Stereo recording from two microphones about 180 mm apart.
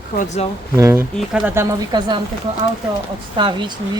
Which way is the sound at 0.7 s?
15° right (ahead or behind).